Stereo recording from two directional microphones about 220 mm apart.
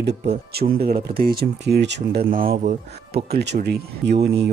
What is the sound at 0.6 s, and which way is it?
Speech, 45° right (ahead or behind).